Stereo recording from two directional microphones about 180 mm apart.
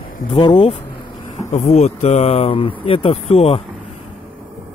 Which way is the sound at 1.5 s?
40° left (ahead or behind).